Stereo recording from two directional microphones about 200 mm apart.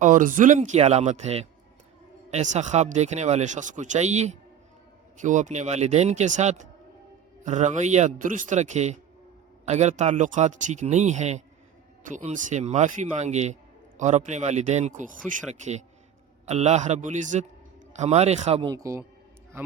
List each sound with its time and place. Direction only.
0.0 s speech: 40° right (ahead or behind); by 19.0 s 15° right (ahead or behind)